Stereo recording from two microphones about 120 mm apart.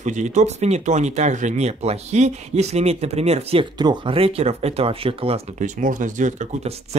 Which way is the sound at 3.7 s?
40° right (ahead or behind).